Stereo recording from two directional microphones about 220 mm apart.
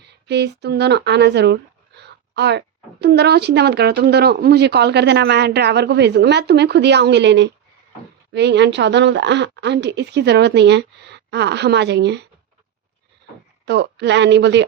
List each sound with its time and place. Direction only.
0.0 s a woman's voice: 50° right (ahead or behind)
13.7 s a woman's voice: 50° right (ahead or behind)